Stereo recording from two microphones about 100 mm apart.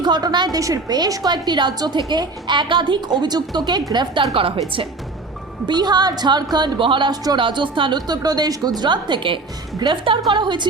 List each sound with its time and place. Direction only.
0.0 s a woman's voice: 45° right (ahead or behind); by 4.6 s 65° right (ahead or behind)
5.6 s a woman's voice: 45° right (ahead or behind)